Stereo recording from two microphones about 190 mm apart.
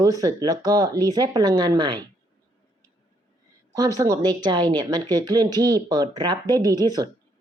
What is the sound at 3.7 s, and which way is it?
Speech, 20° right (ahead or behind).